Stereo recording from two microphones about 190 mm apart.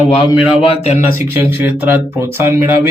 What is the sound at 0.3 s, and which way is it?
Speech, 30° left (ahead or behind).